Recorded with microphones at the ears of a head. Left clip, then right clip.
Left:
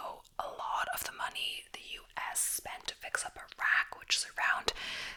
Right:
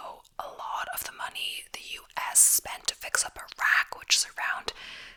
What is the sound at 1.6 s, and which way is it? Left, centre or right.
Whispering, right.